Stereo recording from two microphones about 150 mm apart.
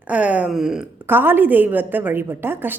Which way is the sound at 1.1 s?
15° right (ahead or behind).